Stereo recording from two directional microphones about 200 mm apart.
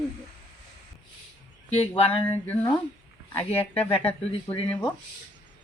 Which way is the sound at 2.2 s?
10° left (ahead or behind).